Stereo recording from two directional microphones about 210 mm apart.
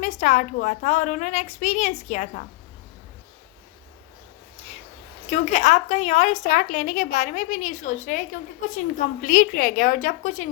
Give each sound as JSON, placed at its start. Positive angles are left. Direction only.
{"t": 0.0, "sound": "a woman's voice", "side_deg": 35}
{"t": 5.3, "sound": "a woman's voice", "side_deg": 35}